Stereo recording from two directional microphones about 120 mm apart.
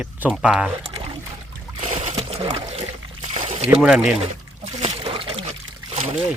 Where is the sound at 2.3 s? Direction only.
50° right (ahead or behind).